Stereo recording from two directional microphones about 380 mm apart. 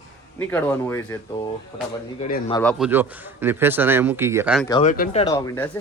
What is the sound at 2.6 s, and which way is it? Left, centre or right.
Speech, centre.